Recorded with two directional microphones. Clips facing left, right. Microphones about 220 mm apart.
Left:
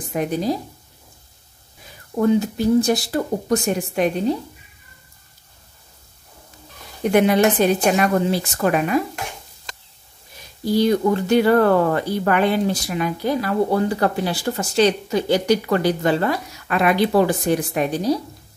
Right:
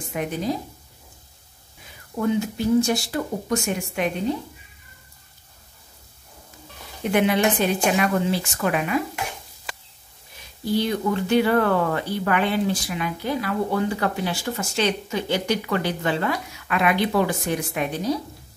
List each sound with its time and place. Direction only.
0.1 s speech: 35° left (ahead or behind)
2.1 s speech: 35° left (ahead or behind)
7.1 s speech: 40° left (ahead or behind)
10.6 s speech: 40° left (ahead or behind)